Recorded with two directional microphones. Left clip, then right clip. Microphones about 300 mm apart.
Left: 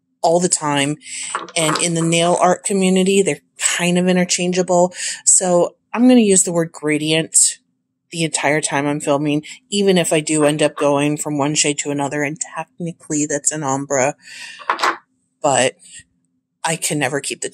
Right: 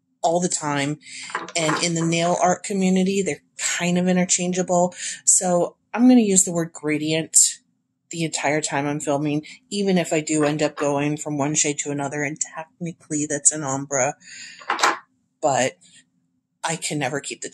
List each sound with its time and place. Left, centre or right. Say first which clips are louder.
0.2 s speech: left 6 dB; left